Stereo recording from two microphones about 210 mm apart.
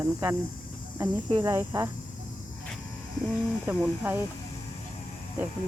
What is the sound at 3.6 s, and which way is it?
Speech, 10° right (ahead or behind).